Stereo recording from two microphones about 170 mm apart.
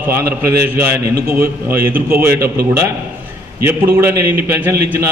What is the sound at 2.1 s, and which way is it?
Speech, 15° right (ahead or behind).